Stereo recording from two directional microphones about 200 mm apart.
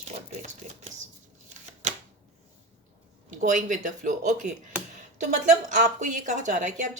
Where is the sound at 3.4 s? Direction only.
40° right (ahead or behind).